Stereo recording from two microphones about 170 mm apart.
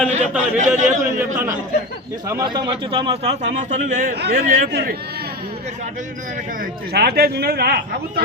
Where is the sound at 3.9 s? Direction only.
50° right (ahead or behind).